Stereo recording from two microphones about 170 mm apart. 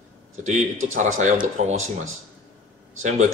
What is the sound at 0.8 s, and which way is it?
Speech, 45° right (ahead or behind).